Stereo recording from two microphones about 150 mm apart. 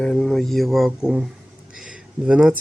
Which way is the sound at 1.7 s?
5° right (ahead or behind).